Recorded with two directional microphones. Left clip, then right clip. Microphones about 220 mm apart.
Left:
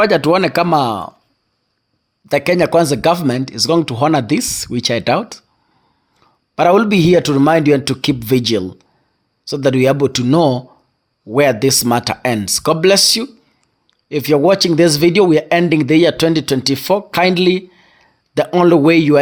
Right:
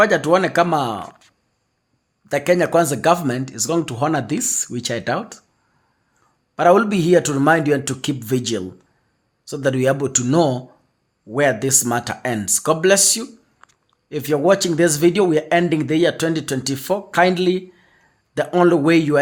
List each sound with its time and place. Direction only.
0.0 s speech: 30° left (ahead or behind)
2.2 s speech: 30° left (ahead or behind)
6.6 s speech: 30° left (ahead or behind)